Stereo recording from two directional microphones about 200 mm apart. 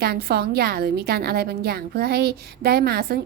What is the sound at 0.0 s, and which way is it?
A woman's voice, 50° right (ahead or behind).